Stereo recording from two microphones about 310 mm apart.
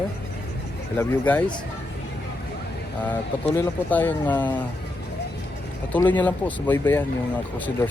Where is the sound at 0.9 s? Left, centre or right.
Centre.